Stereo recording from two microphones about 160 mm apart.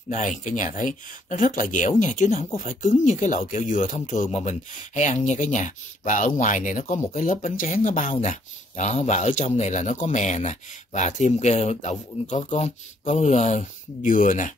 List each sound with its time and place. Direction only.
0.1 s speech: 55° left (ahead or behind)